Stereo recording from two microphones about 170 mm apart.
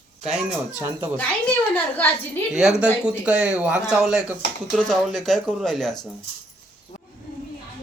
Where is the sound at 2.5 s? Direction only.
5° right (ahead or behind).